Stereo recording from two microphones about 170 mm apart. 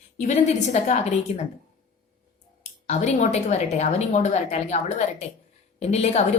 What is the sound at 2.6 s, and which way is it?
Speech, 40° left (ahead or behind).